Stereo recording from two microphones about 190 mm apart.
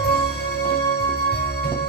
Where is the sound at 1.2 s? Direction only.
55° left (ahead or behind).